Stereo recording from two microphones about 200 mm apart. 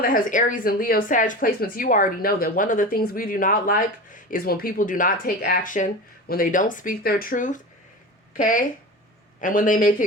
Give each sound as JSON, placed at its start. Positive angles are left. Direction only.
{"t": 0.0, "sound": "a man's voice", "side_deg": 40}